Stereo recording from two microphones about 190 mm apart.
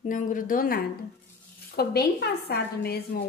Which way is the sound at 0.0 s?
45° left (ahead or behind).